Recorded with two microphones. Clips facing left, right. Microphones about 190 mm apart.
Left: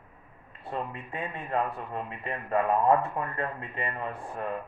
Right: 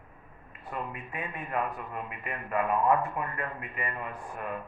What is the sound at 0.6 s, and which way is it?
A man's voice, 30° left (ahead or behind).